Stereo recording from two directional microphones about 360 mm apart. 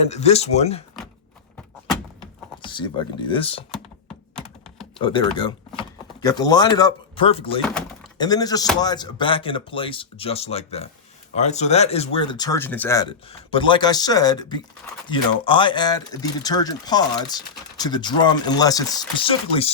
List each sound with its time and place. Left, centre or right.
0.0 s speech: centre
2.6 s speech: centre
4.4 s computer keyboard: centre
4.9 s speech: centre
7.7 s a sound: centre
8.2 s speech: centre